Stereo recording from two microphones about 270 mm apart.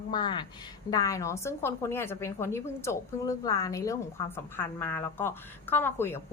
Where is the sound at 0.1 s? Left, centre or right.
Centre.